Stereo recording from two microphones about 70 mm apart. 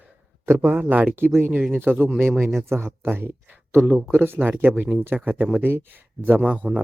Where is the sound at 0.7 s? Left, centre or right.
Right.